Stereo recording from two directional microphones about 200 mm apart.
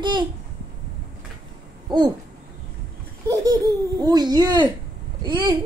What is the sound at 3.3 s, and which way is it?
Speech, 20° right (ahead or behind).